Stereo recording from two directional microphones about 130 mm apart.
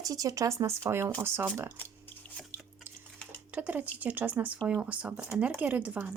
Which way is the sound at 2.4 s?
5° left (ahead or behind).